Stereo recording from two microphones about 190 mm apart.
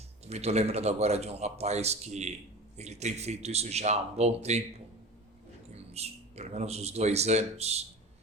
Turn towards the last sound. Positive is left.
turn(degrees=-35)  # may be behind; listen again after turning